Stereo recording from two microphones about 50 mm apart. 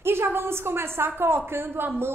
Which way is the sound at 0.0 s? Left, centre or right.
Right.